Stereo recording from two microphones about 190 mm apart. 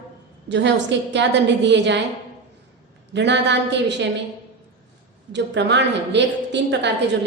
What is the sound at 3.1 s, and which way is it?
Speech, 65° right (ahead or behind).